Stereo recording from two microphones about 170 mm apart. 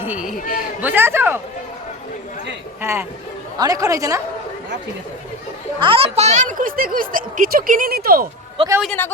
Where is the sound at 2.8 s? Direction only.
15° right (ahead or behind).